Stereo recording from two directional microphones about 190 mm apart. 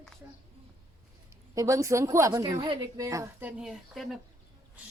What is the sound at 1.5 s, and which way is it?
A woman's voice, 15° right (ahead or behind).